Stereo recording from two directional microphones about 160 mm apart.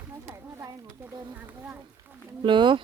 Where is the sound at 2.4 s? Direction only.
30° right (ahead or behind).